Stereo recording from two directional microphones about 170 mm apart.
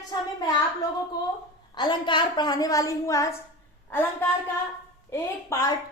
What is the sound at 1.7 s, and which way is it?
A woman's voice, 25° left (ahead or behind).